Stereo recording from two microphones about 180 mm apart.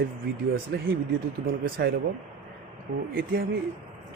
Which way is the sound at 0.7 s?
70° right (ahead or behind).